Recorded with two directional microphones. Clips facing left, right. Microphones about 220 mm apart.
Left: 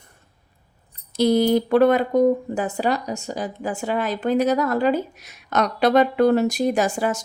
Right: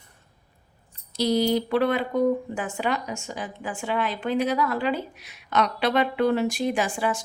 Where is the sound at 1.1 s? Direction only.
50° left (ahead or behind).